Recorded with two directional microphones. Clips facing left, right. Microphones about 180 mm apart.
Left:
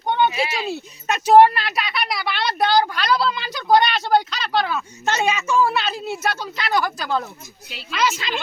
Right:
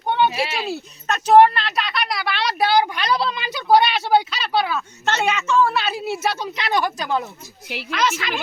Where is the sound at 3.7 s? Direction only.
5° right (ahead or behind).